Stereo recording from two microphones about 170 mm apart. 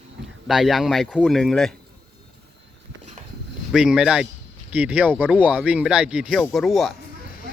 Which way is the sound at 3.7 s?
5° right (ahead or behind).